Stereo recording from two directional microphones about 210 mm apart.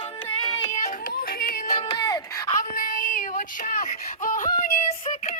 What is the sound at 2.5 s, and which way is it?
Child singing, 40° left (ahead or behind).